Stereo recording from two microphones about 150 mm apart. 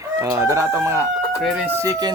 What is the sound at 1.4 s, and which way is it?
Speech, centre (ahead or behind).